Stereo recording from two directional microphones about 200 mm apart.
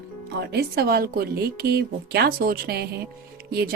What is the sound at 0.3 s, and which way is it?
A woman's voice, 55° right (ahead or behind).